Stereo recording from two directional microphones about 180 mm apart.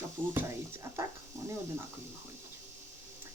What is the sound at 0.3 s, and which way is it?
Speech, 15° right (ahead or behind).